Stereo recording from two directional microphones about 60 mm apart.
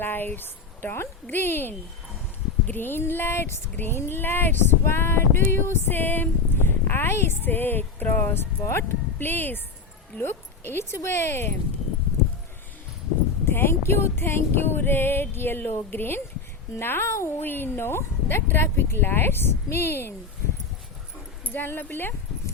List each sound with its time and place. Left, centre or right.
0.0 s speech: left
13.4 s speech: left
21.4 s speech: left